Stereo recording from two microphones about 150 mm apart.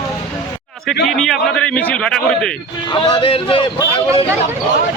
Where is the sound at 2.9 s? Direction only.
30° left (ahead or behind).